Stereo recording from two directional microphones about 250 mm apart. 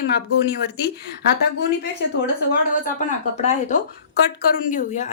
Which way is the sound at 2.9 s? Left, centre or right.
Left.